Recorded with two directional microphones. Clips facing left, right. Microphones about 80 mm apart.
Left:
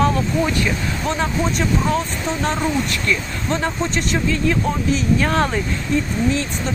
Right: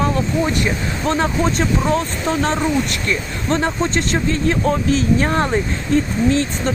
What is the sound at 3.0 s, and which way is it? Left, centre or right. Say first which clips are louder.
Speech: right 1 dB; right.